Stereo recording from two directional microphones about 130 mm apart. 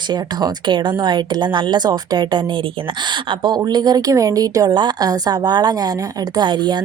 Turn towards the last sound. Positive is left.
turn(degrees=-35)  # may be behind; listen again after turning